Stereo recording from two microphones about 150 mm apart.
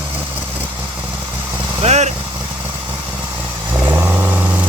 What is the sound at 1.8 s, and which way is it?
Vehicle, 50° right (ahead or behind).